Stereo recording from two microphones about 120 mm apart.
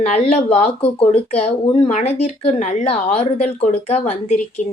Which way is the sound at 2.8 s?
55° left (ahead or behind).